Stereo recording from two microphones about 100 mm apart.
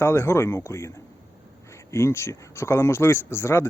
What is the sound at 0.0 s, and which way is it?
Speech, 25° left (ahead or behind).